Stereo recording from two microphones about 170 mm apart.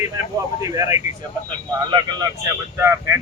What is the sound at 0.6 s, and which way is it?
Speech, 20° right (ahead or behind).